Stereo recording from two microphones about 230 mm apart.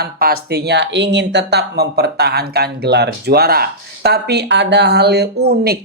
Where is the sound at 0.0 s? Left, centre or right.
Right.